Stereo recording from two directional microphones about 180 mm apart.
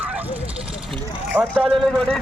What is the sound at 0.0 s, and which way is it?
Bow-wow, 10° right (ahead or behind).